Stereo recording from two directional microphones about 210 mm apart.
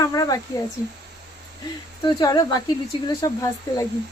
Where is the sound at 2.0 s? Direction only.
20° left (ahead or behind).